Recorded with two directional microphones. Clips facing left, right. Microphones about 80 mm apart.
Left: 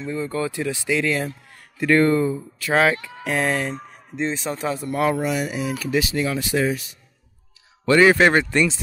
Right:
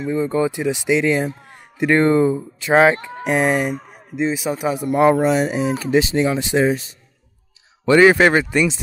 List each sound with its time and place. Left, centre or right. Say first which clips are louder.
0.0 s a man's voice: right 6 dB; centre
7.8 s speech: right 3 dB; centre
8.2 s speech: right 2 dB; centre